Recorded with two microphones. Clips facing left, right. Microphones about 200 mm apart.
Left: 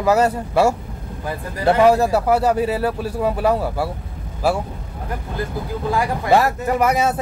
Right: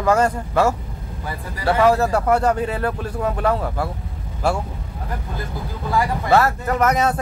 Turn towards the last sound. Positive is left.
turn(degrees=5)  # may be behind; listen again after turning